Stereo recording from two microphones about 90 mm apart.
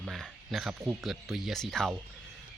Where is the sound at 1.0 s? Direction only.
Centre (ahead or behind).